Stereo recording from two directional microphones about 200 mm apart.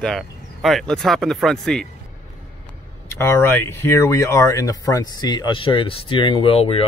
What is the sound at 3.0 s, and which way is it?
Speech, 10° left (ahead or behind).